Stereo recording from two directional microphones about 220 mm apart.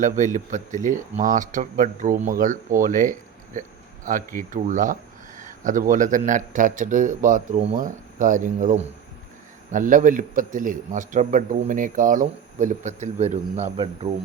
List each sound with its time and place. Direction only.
0.0 s a man's voice: 35° right (ahead or behind)